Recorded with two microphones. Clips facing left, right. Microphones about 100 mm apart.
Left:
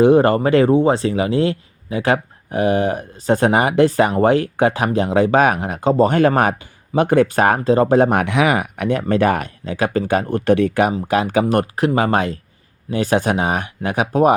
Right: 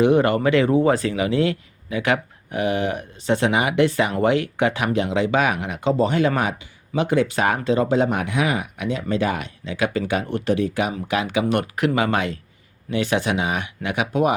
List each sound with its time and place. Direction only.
0.0 s speech: 35° left (ahead or behind)
10.5 s speech: 55° left (ahead or behind)
11.1 s speech: 40° left (ahead or behind)